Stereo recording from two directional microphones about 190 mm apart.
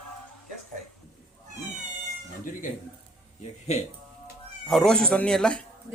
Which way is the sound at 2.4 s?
45° left (ahead or behind).